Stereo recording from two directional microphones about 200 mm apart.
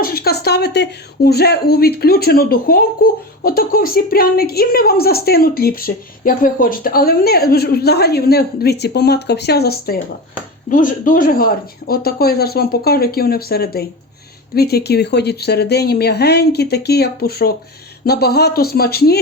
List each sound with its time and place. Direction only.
0.0 s a woman's voice: 50° left (ahead or behind)